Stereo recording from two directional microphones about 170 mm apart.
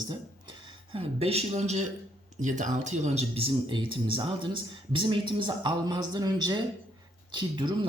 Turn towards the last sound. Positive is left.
turn(degrees=-25)  # may be behind; listen again after turning